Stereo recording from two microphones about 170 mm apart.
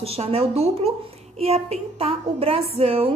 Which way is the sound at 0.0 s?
35° right (ahead or behind).